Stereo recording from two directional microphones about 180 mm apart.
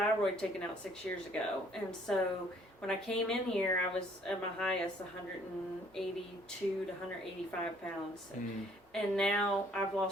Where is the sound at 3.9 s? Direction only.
5° left (ahead or behind).